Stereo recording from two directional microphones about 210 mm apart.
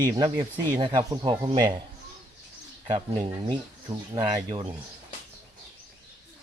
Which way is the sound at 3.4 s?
20° right (ahead or behind).